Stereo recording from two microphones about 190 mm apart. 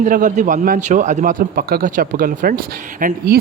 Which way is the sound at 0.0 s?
45° right (ahead or behind).